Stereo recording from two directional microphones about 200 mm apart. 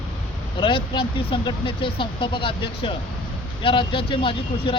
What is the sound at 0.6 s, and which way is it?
Speech, 25° left (ahead or behind).